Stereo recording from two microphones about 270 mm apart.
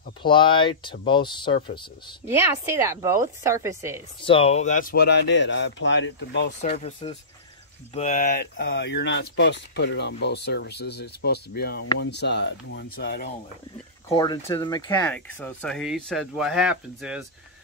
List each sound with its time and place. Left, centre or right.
0.2 s speech: centre
2.2 s speech: centre
4.2 s speech: centre; by 6.5 s left
6.6 s speech: left
14.0 s speech: centre